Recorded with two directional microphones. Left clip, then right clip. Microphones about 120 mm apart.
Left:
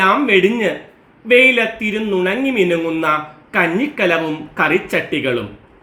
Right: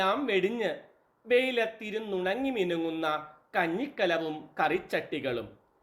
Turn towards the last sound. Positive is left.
turn(degrees=-25)  # may be behind; listen again after turning